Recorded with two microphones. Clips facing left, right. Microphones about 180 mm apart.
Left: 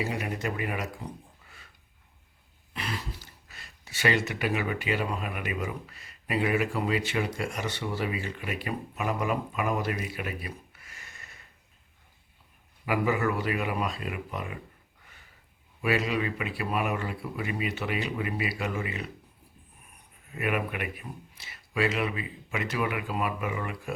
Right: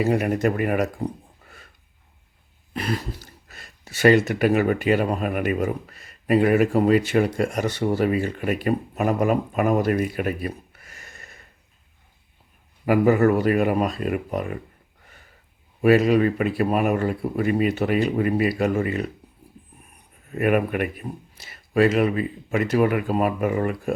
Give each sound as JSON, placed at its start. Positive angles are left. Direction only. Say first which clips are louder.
{"t": 0.0, "sound": "speech", "louder": "right 11 dB", "side_deg": -50}
{"t": 2.7, "sound": "speech", "louder": "right 9 dB", "side_deg": -45}
{"t": 12.8, "sound": "speech", "louder": "right 10 dB", "side_deg": -45}
{"t": 15.8, "sound": "speech", "louder": "right 11 dB", "side_deg": -45}
{"t": 20.3, "sound": "speech", "louder": "right 9 dB", "side_deg": -45}